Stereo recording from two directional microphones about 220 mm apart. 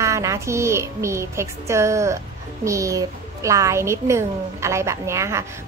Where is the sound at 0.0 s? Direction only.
15° right (ahead or behind).